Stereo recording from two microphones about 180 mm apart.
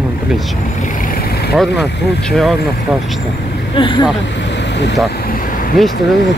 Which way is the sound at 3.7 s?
25° left (ahead or behind).